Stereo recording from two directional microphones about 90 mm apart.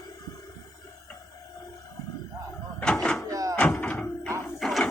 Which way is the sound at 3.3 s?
40° right (ahead or behind).